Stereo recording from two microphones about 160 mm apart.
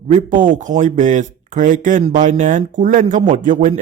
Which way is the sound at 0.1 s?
55° right (ahead or behind).